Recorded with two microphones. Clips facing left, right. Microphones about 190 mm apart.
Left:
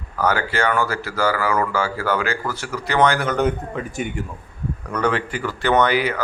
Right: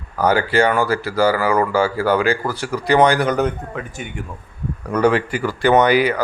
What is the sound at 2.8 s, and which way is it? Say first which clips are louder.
Speech: right 4 dB; 15° right (ahead or behind).